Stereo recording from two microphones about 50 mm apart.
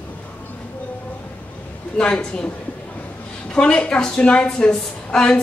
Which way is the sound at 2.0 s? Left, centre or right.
Left.